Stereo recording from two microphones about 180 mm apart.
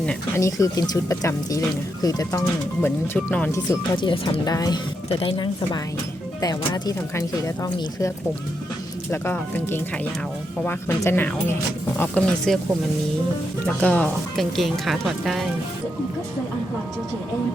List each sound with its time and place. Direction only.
0.3 s speech: 15° left (ahead or behind)
3.7 s speech: 25° left (ahead or behind); by 12.5 s 5° left (ahead or behind)
13.8 s speech: 5° left (ahead or behind)